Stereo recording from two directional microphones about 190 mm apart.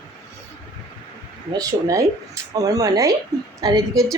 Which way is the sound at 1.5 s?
20° right (ahead or behind).